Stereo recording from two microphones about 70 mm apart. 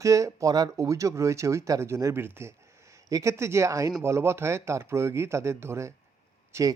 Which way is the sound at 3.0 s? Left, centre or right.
Right.